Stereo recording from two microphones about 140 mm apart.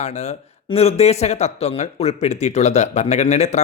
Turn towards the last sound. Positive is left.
turn(degrees=55)  # may be behind; listen again after turning